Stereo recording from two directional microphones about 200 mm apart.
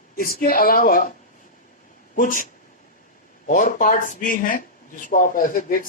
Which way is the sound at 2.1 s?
45° left (ahead or behind).